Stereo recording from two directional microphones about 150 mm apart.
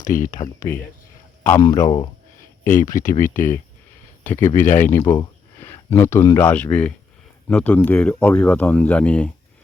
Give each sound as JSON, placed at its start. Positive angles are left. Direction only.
{"t": 0.0, "sound": "speech", "side_deg": 60}
{"t": 1.5, "sound": "speech", "side_deg": 20}
{"t": 2.9, "sound": "speech", "side_deg": 60}
{"t": 4.2, "sound": "speech", "side_deg": 15}